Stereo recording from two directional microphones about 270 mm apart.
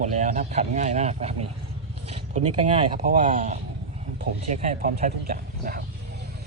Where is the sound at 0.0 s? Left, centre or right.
Right.